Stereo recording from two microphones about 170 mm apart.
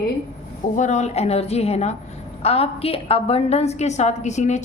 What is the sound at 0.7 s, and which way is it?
A woman's voice, 45° left (ahead or behind).